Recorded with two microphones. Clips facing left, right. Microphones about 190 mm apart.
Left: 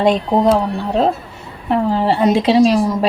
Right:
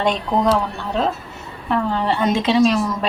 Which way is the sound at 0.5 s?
30° left (ahead or behind).